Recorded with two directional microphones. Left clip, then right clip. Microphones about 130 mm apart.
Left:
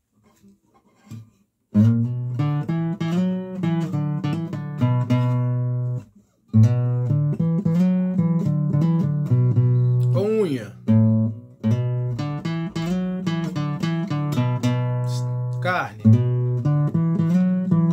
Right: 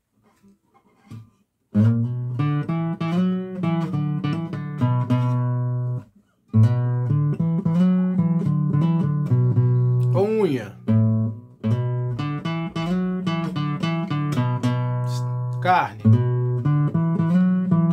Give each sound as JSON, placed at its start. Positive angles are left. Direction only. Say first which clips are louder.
{"t": 1.7, "sound": "music", "louder": "left 2 dB", "side_deg": 35}
{"t": 6.5, "sound": "music", "louder": "left 2 dB", "side_deg": 35}
{"t": 10.1, "sound": "guitar", "louder": "right 1 dB", "side_deg": -15}
{"t": 10.9, "sound": "guitar", "louder": "left 3 dB", "side_deg": 40}
{"t": 11.7, "sound": "music", "louder": "even", "side_deg": 35}
{"t": 15.5, "sound": "guitar", "louder": "right 5 dB", "side_deg": -5}
{"t": 16.0, "sound": "music", "louder": "left 1 dB", "side_deg": 35}